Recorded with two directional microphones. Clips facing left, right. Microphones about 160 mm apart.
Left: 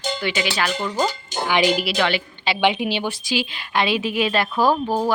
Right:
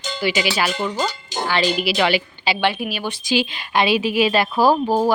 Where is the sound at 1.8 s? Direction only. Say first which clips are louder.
Right 3 dB; 5° right (ahead or behind).